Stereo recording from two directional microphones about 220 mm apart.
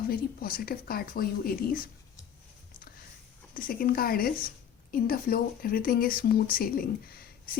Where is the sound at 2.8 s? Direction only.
40° left (ahead or behind).